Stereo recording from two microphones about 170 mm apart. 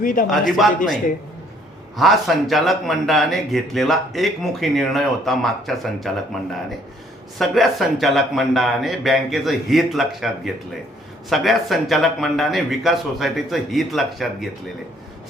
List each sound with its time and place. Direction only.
0.0 s speech: 55° left (ahead or behind)
0.3 s speech: centre (ahead or behind)
2.0 s speech: centre (ahead or behind)
7.3 s speech: centre (ahead or behind)